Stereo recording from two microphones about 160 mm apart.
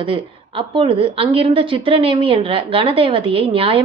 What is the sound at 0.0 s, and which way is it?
A woman's voice, 35° right (ahead or behind).